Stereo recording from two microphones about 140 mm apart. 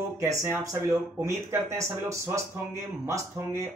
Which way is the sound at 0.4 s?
20° right (ahead or behind).